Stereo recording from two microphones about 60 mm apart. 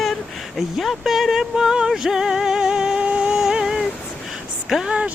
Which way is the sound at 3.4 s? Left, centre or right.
Centre.